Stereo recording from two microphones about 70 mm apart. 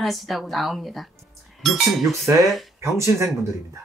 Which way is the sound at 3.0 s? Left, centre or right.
Right.